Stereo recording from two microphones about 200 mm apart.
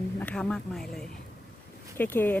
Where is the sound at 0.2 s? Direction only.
5° left (ahead or behind).